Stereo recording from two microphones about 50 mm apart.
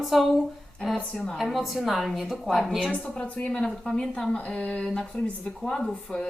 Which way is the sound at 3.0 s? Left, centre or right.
Centre.